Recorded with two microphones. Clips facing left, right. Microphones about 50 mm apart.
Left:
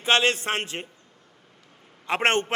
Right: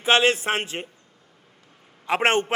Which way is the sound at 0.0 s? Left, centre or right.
Centre.